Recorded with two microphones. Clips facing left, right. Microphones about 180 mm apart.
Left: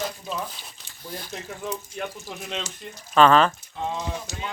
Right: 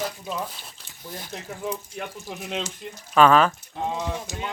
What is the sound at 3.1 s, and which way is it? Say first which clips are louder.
Speech: even; 5° right (ahead or behind).